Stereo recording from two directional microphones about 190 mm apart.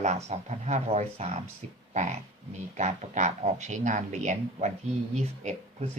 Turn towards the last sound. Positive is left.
turn(degrees=-40)  # may be behind; listen again after turning